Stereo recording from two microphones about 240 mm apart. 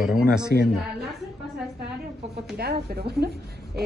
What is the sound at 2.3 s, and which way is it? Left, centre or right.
Speech, right.